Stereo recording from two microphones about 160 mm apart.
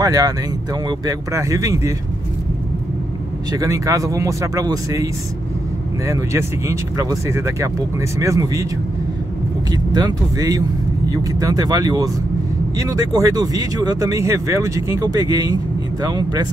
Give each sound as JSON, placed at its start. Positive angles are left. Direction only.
{"t": 0.0, "sound": "speech", "side_deg": -20}
{"t": 3.5, "sound": "speech", "side_deg": -20}
{"t": 9.7, "sound": "speech", "side_deg": -25}